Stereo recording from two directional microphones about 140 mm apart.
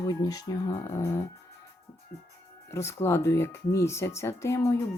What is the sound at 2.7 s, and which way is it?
Speech, 20° left (ahead or behind).